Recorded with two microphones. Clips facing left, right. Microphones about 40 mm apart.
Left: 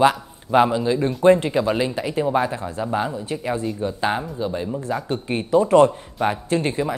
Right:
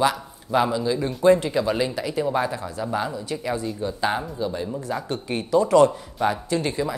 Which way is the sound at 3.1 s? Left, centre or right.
Left.